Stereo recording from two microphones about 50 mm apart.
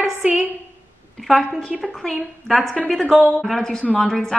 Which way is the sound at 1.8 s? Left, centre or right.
Centre.